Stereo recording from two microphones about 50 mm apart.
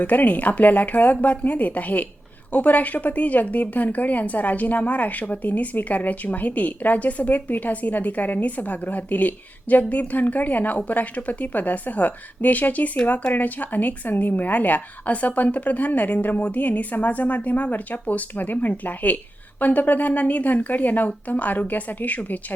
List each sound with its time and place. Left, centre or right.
0.0 s speech: left